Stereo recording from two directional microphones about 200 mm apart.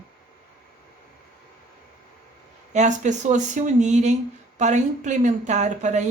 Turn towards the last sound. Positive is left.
turn(degrees=-35)  # may be behind; listen again after turning